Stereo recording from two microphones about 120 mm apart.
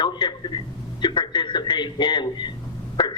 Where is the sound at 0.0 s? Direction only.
40° left (ahead or behind).